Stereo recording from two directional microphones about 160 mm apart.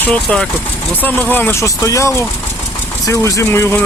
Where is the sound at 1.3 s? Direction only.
15° left (ahead or behind).